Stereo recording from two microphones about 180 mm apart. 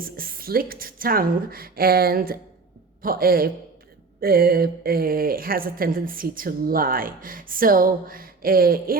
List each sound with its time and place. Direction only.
0.0 s a woman's voice: 55° right (ahead or behind)